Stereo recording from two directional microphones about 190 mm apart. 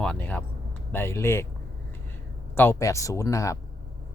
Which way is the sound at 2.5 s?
15° left (ahead or behind).